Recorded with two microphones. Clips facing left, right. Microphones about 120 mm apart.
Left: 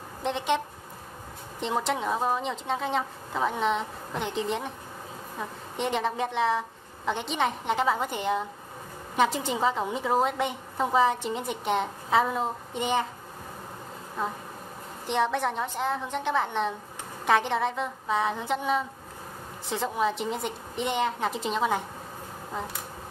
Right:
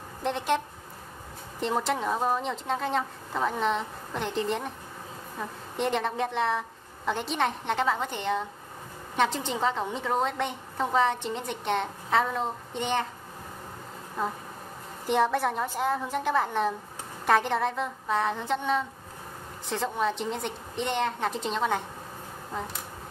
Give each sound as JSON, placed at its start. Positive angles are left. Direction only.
{"t": 0.2, "sound": "speech", "side_deg": 0}
{"t": 1.6, "sound": "a woman's voice", "side_deg": 0}
{"t": 15.0, "sound": "a woman's voice", "side_deg": -5}